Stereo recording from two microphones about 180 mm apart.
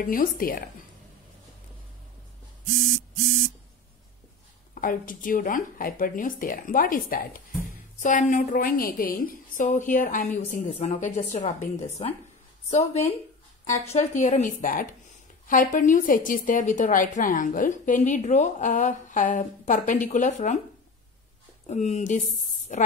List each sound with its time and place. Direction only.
0.0 s a woman's voice: 50° left (ahead or behind)
4.7 s a woman's voice: 50° left (ahead or behind)
21.6 s a woman's voice: 40° left (ahead or behind)